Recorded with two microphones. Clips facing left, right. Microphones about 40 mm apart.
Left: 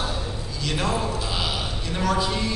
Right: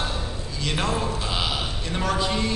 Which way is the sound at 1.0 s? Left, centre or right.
Centre.